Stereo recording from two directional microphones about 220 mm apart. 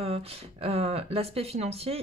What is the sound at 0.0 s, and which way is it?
Speech, 25° right (ahead or behind).